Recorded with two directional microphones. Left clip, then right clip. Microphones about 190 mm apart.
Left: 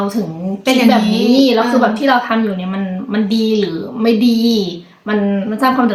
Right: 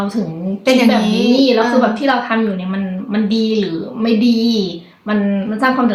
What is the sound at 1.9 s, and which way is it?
A woman's voice, 20° left (ahead or behind).